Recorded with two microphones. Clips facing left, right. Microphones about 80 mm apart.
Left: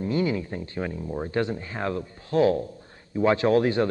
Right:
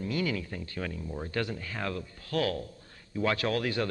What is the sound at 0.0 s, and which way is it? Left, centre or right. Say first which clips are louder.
Speech: left 6 dB; left.